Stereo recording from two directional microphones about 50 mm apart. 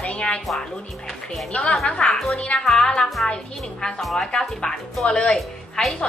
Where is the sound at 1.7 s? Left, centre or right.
Centre.